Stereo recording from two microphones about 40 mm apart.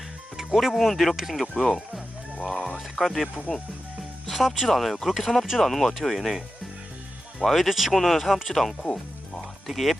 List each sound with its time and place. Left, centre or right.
0.3 s music: centre
0.7 s speech: centre
2.5 s music: centre
3.0 s speech: centre
8.8 s music: centre
9.6 s speech: centre